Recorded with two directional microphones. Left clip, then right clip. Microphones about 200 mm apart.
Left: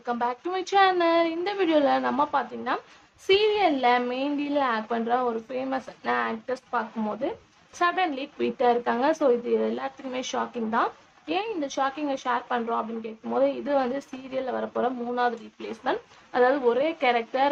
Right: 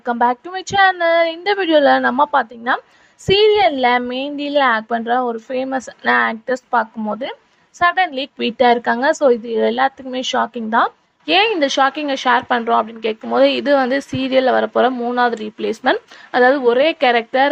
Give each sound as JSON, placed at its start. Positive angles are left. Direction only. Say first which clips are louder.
{"t": 0.0, "sound": "a woman's voice", "louder": "right 11 dB", "side_deg": -40}